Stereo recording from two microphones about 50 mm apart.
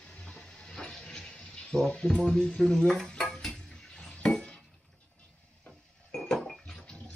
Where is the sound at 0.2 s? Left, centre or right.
Centre.